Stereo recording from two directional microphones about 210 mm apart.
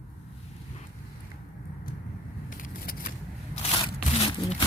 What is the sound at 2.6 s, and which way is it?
Vehicle, 45° left (ahead or behind).